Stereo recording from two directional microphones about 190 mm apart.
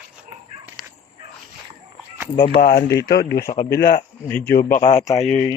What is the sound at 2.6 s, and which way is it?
Speech, 50° left (ahead or behind).